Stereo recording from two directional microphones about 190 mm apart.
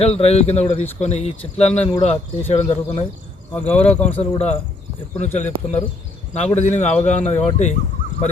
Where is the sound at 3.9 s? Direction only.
10° left (ahead or behind).